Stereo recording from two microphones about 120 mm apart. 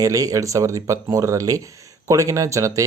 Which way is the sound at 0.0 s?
30° right (ahead or behind).